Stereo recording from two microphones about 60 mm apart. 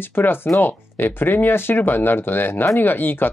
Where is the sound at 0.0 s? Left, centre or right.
Left.